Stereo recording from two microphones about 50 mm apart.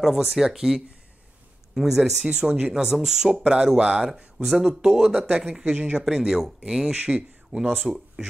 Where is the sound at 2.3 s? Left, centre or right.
Right.